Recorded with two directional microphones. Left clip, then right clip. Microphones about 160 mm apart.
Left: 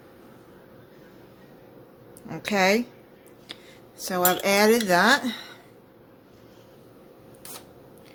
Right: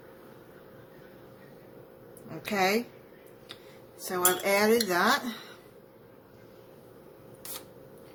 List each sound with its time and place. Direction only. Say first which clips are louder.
2.3 s a woman's voice: left 5 dB; 60° left (ahead or behind)
4.1 s cutlery: left 4 dB; 60° left (ahead or behind)